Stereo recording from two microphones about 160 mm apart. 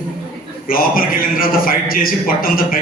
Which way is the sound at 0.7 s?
60° left (ahead or behind).